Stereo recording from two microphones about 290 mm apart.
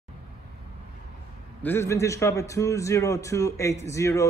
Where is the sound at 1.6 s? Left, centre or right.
Centre.